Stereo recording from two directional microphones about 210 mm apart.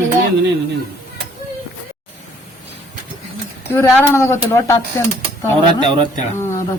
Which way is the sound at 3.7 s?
10° left (ahead or behind).